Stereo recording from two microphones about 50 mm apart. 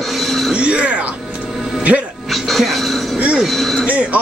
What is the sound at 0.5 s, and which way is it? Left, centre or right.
Speech, right.